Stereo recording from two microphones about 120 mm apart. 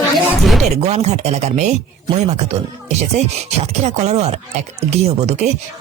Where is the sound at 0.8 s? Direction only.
65° right (ahead or behind).